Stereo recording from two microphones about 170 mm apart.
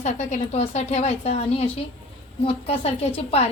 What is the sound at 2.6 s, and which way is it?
Speech, 35° left (ahead or behind).